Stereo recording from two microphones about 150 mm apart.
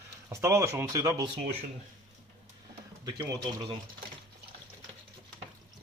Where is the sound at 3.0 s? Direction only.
25° right (ahead or behind).